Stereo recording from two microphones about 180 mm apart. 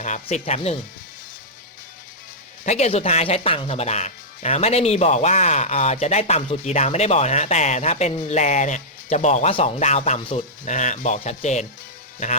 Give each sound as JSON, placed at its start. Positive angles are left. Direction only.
{"t": 0.0, "sound": "speech", "side_deg": 40}
{"t": 2.6, "sound": "speech", "side_deg": 35}